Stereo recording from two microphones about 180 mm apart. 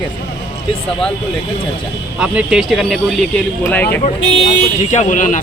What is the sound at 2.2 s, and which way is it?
Speech, 5° right (ahead or behind).